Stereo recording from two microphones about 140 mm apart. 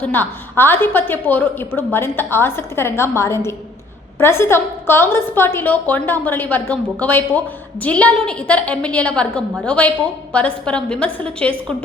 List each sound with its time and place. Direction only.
0.0 s a woman's voice: 15° left (ahead or behind)